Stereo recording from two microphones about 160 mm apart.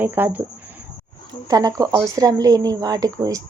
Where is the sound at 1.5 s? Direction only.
25° right (ahead or behind).